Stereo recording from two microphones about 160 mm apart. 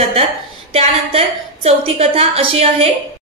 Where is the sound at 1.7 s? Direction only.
40° right (ahead or behind).